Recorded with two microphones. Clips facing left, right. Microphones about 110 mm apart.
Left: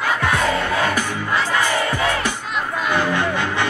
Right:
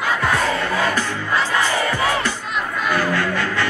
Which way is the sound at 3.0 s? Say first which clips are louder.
Left 1 dB; 20° left (ahead or behind).